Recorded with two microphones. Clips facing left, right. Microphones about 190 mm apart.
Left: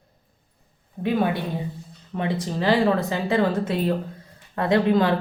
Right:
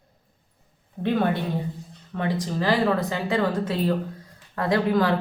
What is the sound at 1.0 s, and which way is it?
Speech, 10° left (ahead or behind).